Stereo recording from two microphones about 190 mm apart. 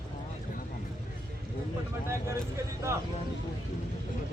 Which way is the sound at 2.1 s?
15° right (ahead or behind).